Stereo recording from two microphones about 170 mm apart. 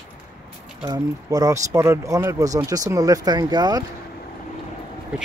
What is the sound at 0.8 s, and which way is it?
Speech, 20° right (ahead or behind).